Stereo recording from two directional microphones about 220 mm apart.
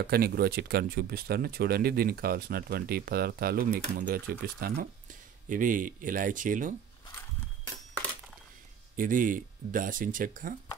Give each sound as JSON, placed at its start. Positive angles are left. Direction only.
{"t": 0.0, "sound": "speech", "side_deg": -45}
{"t": 8.9, "sound": "speech", "side_deg": -40}